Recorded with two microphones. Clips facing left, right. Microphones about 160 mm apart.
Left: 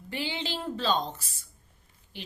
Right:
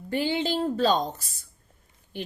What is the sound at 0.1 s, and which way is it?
A woman's voice, 45° right (ahead or behind).